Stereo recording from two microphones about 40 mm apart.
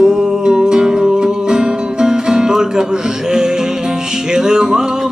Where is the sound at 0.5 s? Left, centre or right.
Centre.